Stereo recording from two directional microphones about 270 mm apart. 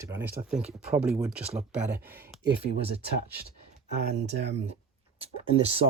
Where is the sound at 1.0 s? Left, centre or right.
Centre.